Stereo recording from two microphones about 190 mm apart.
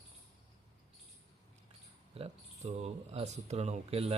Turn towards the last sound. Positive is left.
turn(degrees=-30)  # may be behind; listen again after turning